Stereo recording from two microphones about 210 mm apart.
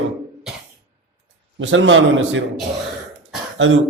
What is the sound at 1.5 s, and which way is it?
Mantra, 65° right (ahead or behind).